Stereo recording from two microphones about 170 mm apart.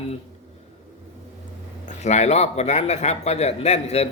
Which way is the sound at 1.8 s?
45° left (ahead or behind).